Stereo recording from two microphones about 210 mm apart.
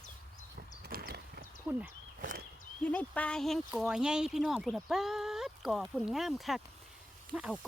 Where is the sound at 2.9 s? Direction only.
5° left (ahead or behind).